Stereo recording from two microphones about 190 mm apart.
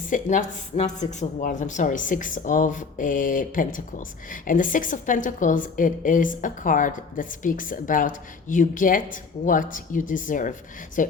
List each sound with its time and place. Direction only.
0.1 s speech: 40° left (ahead or behind)